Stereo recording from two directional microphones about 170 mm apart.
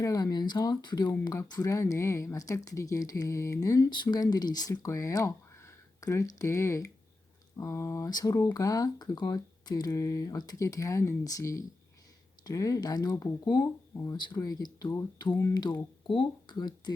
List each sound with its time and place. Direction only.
0.0 s speech: 20° left (ahead or behind)